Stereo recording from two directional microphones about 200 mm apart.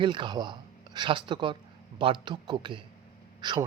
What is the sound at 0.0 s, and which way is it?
Speech, 25° right (ahead or behind).